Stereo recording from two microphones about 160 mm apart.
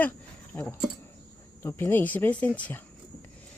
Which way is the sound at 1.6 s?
15° left (ahead or behind).